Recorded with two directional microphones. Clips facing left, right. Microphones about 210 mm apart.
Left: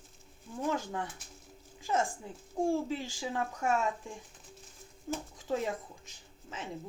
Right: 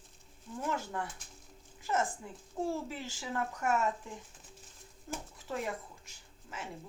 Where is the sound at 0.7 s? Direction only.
15° left (ahead or behind).